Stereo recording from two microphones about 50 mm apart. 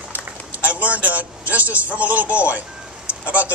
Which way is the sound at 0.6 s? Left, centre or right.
Right.